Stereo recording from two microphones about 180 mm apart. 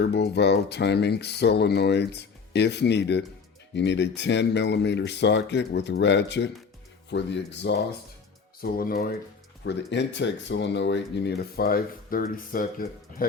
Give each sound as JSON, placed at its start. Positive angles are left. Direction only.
{"t": 0.0, "sound": "speech", "side_deg": 65}
{"t": 8.6, "sound": "speech", "side_deg": 55}
{"t": 9.6, "sound": "speech", "side_deg": 75}